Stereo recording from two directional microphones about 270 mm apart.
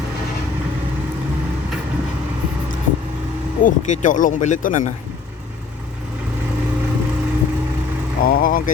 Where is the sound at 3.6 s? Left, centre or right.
Left.